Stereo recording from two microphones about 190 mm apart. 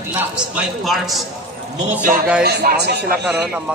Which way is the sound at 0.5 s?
Centre (ahead or behind).